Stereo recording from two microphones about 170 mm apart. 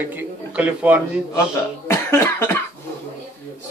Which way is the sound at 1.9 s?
15° left (ahead or behind).